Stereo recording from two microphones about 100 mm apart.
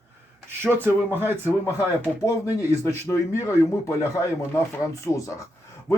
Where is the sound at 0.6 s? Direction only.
25° right (ahead or behind).